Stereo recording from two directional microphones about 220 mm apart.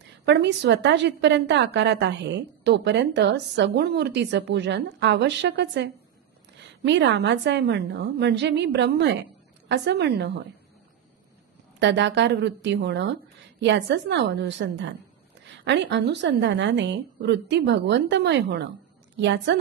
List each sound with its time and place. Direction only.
0.0 s a woman's voice: 50° right (ahead or behind)
11.8 s a woman's voice: 55° right (ahead or behind)